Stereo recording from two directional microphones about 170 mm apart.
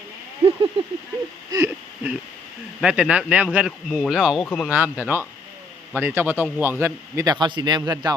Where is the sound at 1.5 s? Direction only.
15° right (ahead or behind); by 4.7 s 5° left (ahead or behind).